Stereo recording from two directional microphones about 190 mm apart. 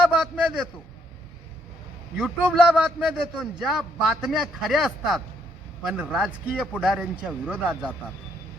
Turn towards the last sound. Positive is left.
turn(degrees=-5)  # may be behind; listen again after turning